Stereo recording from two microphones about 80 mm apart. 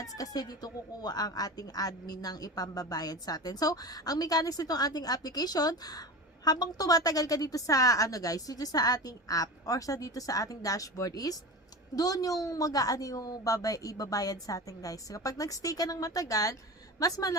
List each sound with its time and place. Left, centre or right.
0.0 s a woman's voice: left